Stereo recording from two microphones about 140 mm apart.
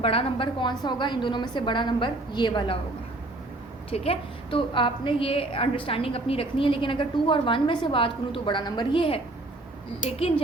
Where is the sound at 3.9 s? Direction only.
45° left (ahead or behind).